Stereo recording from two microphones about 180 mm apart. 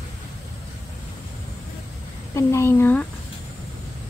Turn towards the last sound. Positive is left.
turn(degrees=10)  # may be behind; listen again after turning